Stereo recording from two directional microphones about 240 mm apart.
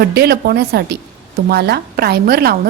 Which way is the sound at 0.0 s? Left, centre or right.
Right.